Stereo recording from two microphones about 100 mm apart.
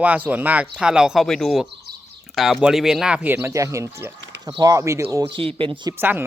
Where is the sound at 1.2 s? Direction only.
5° left (ahead or behind).